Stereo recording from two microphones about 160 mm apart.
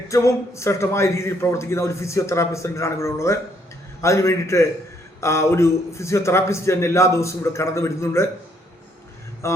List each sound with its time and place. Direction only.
0.1 s a man's voice: 20° left (ahead or behind)
9.4 s a man's voice: 20° left (ahead or behind)